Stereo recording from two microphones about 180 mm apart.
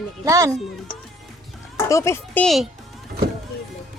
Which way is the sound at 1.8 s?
15° left (ahead or behind).